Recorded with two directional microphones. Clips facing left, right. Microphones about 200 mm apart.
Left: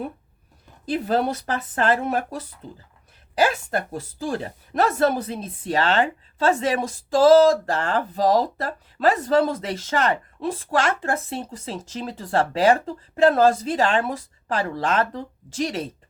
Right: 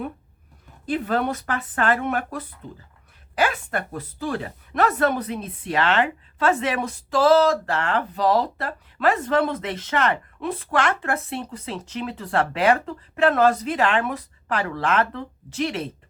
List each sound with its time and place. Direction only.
0.9 s speech: 35° left (ahead or behind)
11.9 s speech: 30° left (ahead or behind)